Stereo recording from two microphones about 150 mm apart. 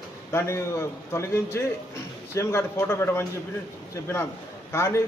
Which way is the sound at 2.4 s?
15° left (ahead or behind).